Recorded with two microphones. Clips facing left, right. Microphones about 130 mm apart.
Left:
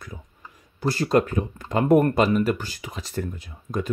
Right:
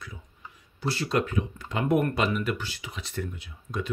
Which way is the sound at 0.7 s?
45° left (ahead or behind).